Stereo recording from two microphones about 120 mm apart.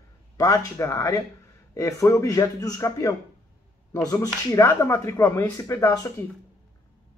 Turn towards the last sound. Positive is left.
turn(degrees=25)  # may be behind; listen again after turning